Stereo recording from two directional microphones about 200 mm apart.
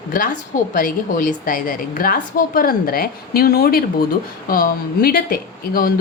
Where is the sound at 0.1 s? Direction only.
45° left (ahead or behind).